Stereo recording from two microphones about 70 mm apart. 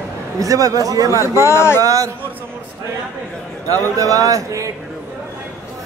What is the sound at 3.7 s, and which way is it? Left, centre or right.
A man's voice, right.